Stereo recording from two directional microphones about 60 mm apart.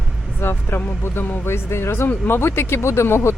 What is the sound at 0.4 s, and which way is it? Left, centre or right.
Speech, left.